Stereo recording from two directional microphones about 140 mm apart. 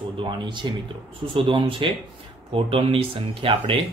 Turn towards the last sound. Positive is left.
turn(degrees=-40)  # may be behind; listen again after turning